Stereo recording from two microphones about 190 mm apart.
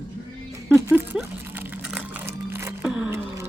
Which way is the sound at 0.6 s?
10° right (ahead or behind).